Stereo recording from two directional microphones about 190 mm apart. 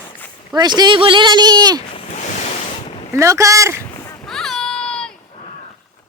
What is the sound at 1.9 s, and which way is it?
Ocean, 35° left (ahead or behind).